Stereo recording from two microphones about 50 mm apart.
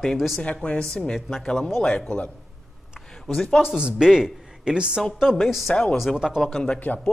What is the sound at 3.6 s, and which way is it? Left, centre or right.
A woman's voice, centre.